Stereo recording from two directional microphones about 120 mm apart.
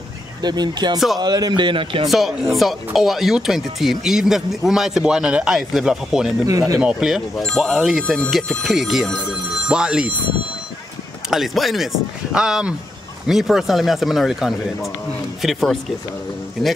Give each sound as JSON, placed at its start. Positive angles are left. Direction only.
{"t": 0.4, "sound": "a man's voice", "side_deg": -35}
{"t": 2.0, "sound": "speech", "side_deg": 0}
{"t": 6.4, "sound": "a man's voice", "side_deg": -25}
{"t": 6.8, "sound": "speech", "side_deg": -5}
{"t": 11.2, "sound": "speech", "side_deg": 0}